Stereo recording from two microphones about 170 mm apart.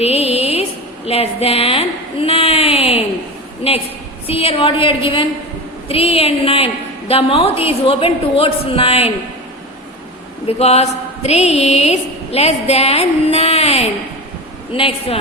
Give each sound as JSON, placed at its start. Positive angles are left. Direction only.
{"t": 0.0, "sound": "music", "side_deg": 35}
{"t": 1.0, "sound": "a sound", "side_deg": 35}
{"t": 3.6, "sound": "a woman's voice", "side_deg": 35}
{"t": 10.4, "sound": "a woman's voice", "side_deg": 35}